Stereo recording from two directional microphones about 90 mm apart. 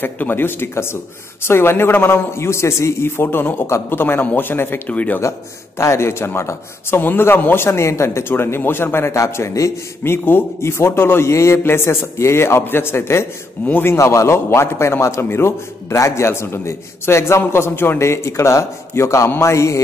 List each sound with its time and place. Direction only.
0.0 s a man's voice: 20° left (ahead or behind)
5.8 s a man's voice: 30° left (ahead or behind)